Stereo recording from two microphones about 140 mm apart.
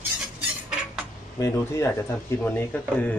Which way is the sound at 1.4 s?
20° left (ahead or behind).